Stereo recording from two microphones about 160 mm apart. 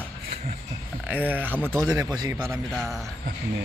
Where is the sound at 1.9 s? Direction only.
20° right (ahead or behind).